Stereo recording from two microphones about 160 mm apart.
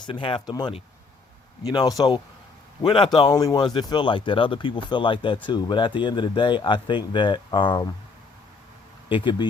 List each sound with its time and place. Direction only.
0.0 s speech: 30° left (ahead or behind)
9.0 s speech: 30° left (ahead or behind)